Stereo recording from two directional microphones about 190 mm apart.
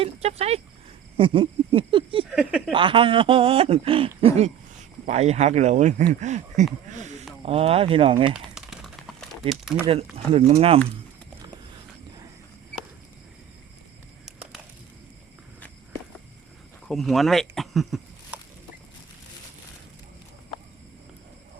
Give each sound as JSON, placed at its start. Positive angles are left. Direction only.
{"t": 0.0, "sound": "speech", "side_deg": -35}
{"t": 2.3, "sound": "speech", "side_deg": -5}
{"t": 2.7, "sound": "speech", "side_deg": -25}
{"t": 6.9, "sound": "a sound", "side_deg": -40}
{"t": 7.4, "sound": "speech", "side_deg": -30}
{"t": 8.5, "sound": "horse", "side_deg": 0}
{"t": 9.5, "sound": "speech", "side_deg": -5}
{"t": 9.8, "sound": "speech", "side_deg": -30}
{"t": 16.9, "sound": "speech", "side_deg": 0}